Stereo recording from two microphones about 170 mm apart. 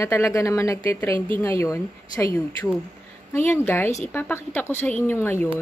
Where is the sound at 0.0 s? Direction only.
15° left (ahead or behind).